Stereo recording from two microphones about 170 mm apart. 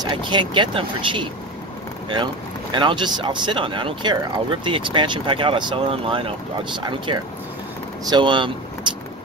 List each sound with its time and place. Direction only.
0.0 s speech: 30° right (ahead or behind)
2.7 s speech: 30° right (ahead or behind)